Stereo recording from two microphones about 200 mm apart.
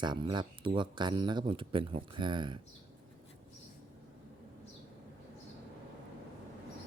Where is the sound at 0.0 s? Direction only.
20° right (ahead or behind).